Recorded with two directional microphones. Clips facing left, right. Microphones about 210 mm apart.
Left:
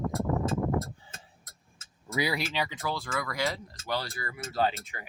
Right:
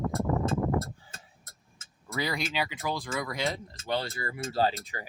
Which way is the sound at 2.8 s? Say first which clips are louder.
Right 1 dB; 15° right (ahead or behind).